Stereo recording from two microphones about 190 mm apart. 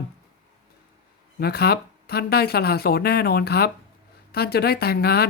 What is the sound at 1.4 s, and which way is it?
Speech, 55° left (ahead or behind).